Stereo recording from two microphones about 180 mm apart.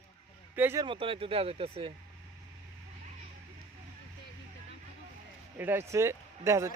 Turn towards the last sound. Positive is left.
turn(degrees=-15)  # may be behind; listen again after turning